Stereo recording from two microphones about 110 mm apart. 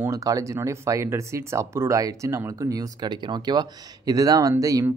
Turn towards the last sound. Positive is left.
turn(degrees=-30)  # may be behind; listen again after turning